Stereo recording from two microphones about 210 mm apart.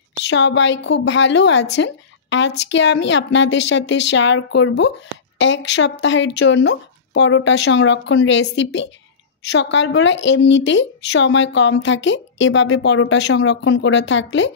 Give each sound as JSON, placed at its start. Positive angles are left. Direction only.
{"t": 0.2, "sound": "a woman's voice", "side_deg": 60}